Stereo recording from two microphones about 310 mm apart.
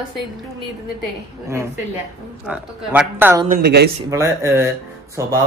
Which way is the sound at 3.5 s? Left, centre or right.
Right.